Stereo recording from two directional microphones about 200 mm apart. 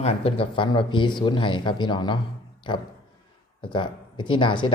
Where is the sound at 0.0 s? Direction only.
30° left (ahead or behind).